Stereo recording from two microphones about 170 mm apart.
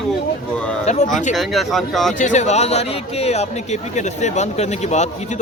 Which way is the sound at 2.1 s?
45° left (ahead or behind).